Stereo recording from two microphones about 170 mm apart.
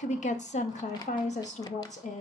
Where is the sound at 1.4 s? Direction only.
20° left (ahead or behind).